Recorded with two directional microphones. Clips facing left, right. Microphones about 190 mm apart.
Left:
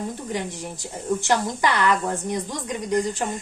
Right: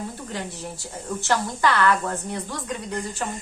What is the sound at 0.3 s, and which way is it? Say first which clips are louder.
A woman's voice: left 3 dB; 15° left (ahead or behind).